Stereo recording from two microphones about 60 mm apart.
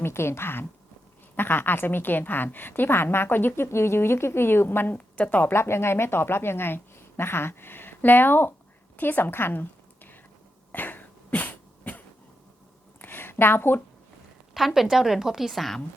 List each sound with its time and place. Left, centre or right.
0.0 s a woman's voice: left
4.9 s a woman's voice: left
5.5 s a woman's voice: left
10.7 s cough: left
13.0 s a sound: left
14.5 s a woman's voice: centre